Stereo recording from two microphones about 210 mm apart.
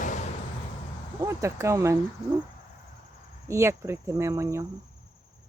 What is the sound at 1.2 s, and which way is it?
Speech, 15° right (ahead or behind).